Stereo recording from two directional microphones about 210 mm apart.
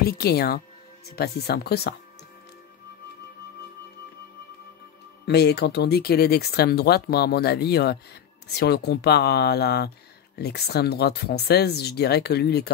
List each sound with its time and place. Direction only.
0.0 s speech: 45° left (ahead or behind)
5.2 s speech: 50° left (ahead or behind)